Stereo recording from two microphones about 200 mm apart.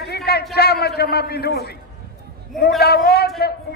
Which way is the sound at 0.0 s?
50° left (ahead or behind).